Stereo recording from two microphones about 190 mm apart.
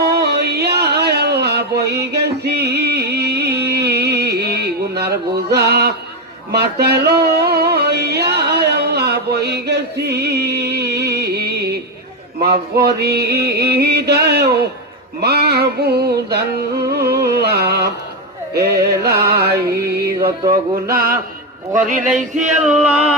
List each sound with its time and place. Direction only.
0.0 s a sound: 60° right (ahead or behind)
6.5 s music: 60° right (ahead or behind)
16.9 s carnatic music: 55° right (ahead or behind)
20.1 s music: 25° right (ahead or behind)
20.8 s mantra: 50° right (ahead or behind)
21.8 s a sound: 40° right (ahead or behind)
22.6 s music: centre (ahead or behind)